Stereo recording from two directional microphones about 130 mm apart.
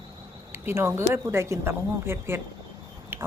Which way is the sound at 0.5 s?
20° right (ahead or behind).